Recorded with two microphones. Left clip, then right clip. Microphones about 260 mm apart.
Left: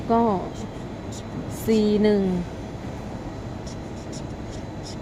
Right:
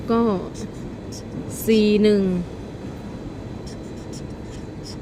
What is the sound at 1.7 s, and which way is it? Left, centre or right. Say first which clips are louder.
Speech: right 3 dB; centre.